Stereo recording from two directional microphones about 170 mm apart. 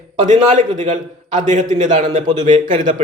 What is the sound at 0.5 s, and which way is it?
A man's voice, 45° right (ahead or behind).